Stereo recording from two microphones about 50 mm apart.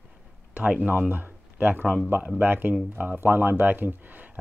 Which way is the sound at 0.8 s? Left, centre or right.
Right.